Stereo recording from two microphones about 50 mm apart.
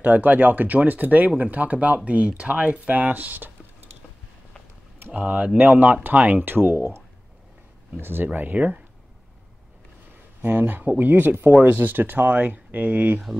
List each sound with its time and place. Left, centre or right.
0.0 s speech: right
5.1 s speech: right
6.4 s speech: right
8.0 s speech: right
8.5 s speech: right
10.4 s speech: right